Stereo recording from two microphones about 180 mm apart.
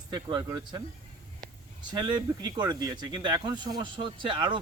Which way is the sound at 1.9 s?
25° right (ahead or behind).